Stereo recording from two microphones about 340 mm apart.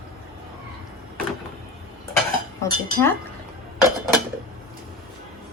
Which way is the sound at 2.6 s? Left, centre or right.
Centre.